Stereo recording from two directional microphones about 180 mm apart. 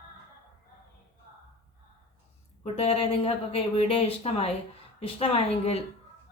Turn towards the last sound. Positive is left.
turn(degrees=35)  # may be behind; listen again after turning